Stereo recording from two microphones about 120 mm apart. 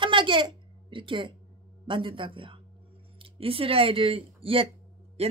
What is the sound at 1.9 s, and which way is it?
A woman's voice, 45° right (ahead or behind).